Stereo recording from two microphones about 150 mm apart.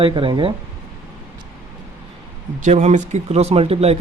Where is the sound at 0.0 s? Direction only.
35° right (ahead or behind).